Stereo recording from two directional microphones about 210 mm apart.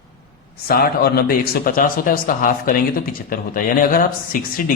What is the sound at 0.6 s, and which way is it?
Speech, 45° left (ahead or behind).